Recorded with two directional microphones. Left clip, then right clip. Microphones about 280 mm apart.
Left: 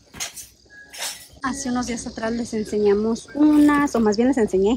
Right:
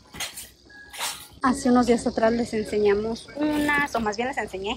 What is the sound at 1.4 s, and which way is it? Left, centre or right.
Speech, centre.